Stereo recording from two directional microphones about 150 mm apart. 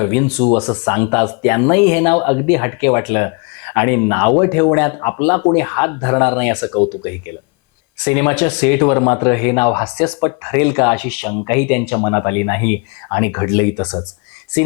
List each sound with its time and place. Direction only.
0.0 s speech: 15° left (ahead or behind)